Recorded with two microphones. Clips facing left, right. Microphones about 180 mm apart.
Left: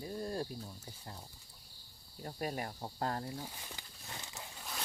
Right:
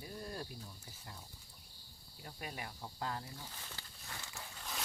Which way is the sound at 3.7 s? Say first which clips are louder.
Left 2 dB; 20° left (ahead or behind).